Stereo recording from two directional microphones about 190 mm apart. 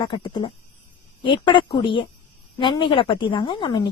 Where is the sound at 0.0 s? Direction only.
25° left (ahead or behind).